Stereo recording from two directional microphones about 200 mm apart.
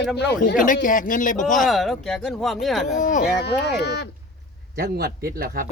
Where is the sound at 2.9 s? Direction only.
40° left (ahead or behind); by 4.0 s 55° left (ahead or behind).